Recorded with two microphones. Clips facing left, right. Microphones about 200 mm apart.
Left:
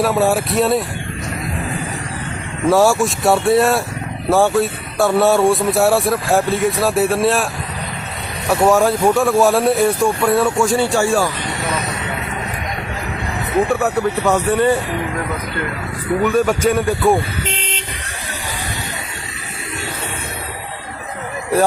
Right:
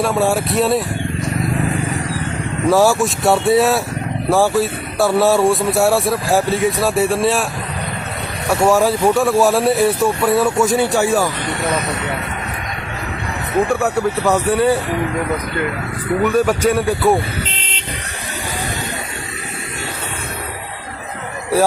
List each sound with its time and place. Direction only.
0.0 s speech: centre (ahead or behind)
2.6 s speech: centre (ahead or behind)
8.4 s speech: centre (ahead or behind)
10.7 s speech: 15° right (ahead or behind)
13.7 s speech: centre (ahead or behind)
16.2 s speech: centre (ahead or behind)